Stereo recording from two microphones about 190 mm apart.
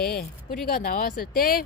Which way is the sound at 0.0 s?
55° left (ahead or behind).